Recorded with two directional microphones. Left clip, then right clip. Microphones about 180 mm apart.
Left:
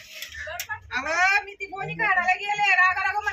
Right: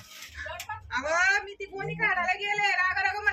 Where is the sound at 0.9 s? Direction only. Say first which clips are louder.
Left 3 dB; 10° left (ahead or behind).